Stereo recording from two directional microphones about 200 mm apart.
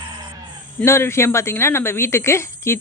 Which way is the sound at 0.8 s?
15° left (ahead or behind).